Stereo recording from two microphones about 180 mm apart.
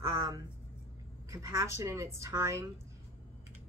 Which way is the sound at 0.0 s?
20° right (ahead or behind).